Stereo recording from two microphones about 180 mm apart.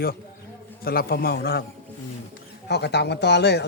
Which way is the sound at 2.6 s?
70° left (ahead or behind).